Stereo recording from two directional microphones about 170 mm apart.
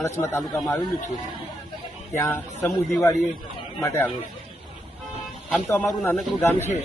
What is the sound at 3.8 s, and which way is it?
Speech, 15° left (ahead or behind).